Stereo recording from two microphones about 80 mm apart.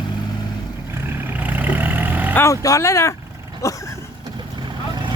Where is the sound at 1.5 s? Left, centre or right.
Right.